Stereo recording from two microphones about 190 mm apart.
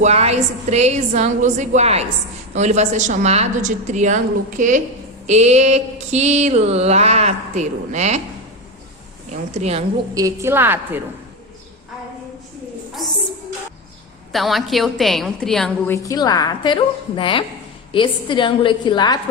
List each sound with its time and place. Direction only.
0.0 s mantra: 35° right (ahead or behind)
9.6 s mantra: 35° right (ahead or behind)
10.2 s a woman's voice: 15° right (ahead or behind)
13.0 s a woman's voice: 20° left (ahead or behind)
14.3 s a woman's voice: centre (ahead or behind)
16.0 s a woman's voice: 20° left (ahead or behind)